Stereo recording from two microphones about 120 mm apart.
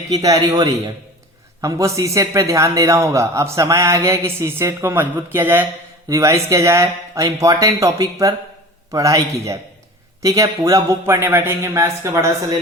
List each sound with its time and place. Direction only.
0.1 s a man's voice: 30° right (ahead or behind)